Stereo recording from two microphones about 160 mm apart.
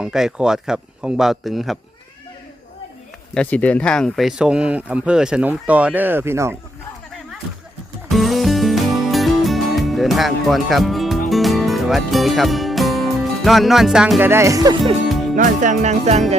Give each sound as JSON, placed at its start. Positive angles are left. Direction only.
{"t": 0.0, "sound": "speech", "side_deg": -5}
{"t": 3.3, "sound": "speech", "side_deg": 10}
{"t": 8.1, "sound": "music", "side_deg": 0}
{"t": 15.4, "sound": "speech", "side_deg": -50}